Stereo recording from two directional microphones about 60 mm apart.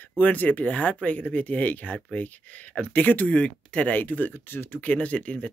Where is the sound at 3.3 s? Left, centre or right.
Centre.